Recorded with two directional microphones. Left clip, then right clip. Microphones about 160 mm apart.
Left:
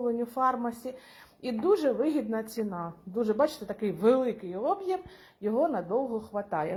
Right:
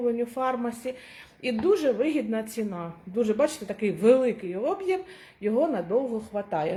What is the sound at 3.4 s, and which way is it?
Speech, 15° right (ahead or behind).